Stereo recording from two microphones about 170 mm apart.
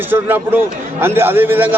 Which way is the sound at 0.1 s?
10° right (ahead or behind).